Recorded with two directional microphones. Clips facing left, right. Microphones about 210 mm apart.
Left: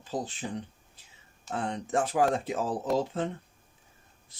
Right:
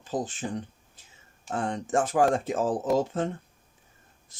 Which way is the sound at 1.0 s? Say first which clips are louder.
Right 2 dB; 45° right (ahead or behind).